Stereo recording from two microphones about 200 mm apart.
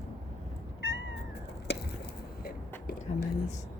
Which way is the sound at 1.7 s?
55° left (ahead or behind).